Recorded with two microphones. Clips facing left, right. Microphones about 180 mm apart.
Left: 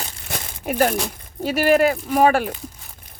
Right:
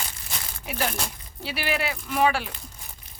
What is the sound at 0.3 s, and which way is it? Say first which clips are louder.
Crumpling: left 13 dB; 50° left (ahead or behind).